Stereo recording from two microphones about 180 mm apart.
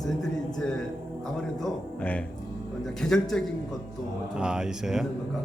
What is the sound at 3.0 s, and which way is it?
A man's voice, centre (ahead or behind).